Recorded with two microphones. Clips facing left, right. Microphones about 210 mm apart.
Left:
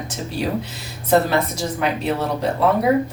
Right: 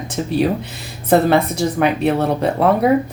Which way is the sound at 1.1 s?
55° right (ahead or behind).